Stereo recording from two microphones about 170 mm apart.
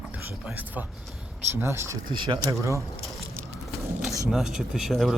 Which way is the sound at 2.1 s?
30° right (ahead or behind).